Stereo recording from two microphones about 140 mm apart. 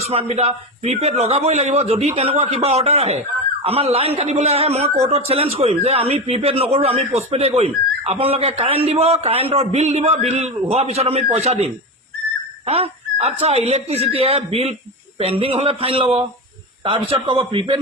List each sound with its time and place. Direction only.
0.0 s a man's voice: 50° right (ahead or behind)